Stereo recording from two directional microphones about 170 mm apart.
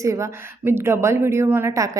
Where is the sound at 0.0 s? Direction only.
15° right (ahead or behind).